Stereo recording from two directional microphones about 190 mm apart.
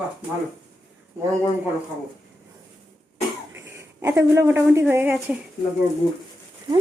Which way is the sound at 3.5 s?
15° right (ahead or behind).